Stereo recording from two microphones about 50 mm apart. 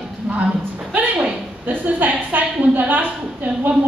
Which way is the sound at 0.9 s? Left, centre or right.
Right.